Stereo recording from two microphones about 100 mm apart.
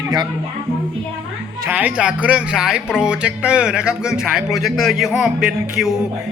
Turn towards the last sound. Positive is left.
turn(degrees=-5)  # may be behind; listen again after turning